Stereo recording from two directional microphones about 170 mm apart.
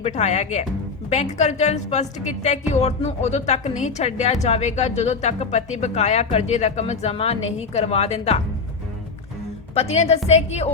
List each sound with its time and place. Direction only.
0.0 s a woman's voice: 40° left (ahead or behind)
9.7 s a woman's voice: 35° left (ahead or behind)